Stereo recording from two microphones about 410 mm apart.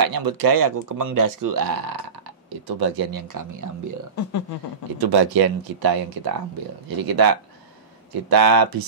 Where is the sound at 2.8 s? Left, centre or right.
Right.